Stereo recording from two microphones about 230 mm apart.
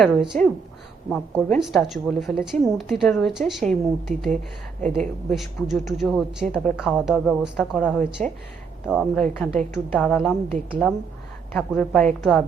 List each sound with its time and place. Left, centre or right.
0.0 s a woman's voice: centre
1.5 s a woman's voice: centre